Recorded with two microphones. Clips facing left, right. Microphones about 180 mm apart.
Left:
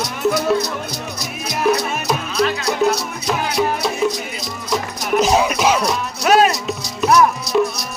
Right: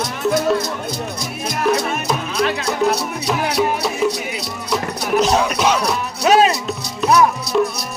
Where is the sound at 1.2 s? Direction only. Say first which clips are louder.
Left 4 dB; 50° right (ahead or behind).